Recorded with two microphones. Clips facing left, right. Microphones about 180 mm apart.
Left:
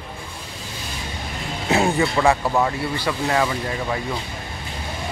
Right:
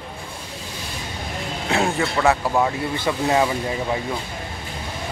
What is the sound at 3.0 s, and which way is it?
Speech, 20° right (ahead or behind).